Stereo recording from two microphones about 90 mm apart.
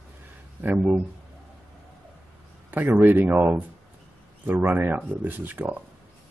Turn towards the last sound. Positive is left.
turn(degrees=-20)  # may be behind; listen again after turning